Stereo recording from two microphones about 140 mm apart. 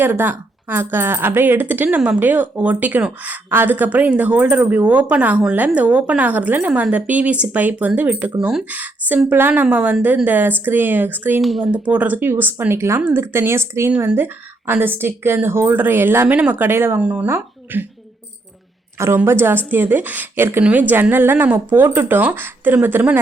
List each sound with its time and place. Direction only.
0.0 s speech: 15° right (ahead or behind)
11.3 s speech: centre (ahead or behind)
11.7 s speech: 10° right (ahead or behind)
18.9 s speech: 20° right (ahead or behind)